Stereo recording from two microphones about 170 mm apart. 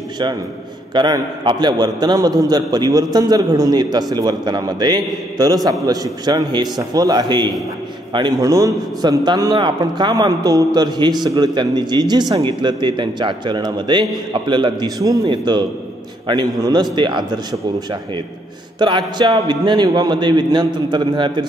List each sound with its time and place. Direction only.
0.9 s a man's voice: 25° right (ahead or behind)